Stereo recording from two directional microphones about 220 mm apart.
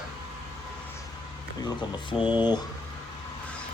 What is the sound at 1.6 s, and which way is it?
Speech, 20° left (ahead or behind).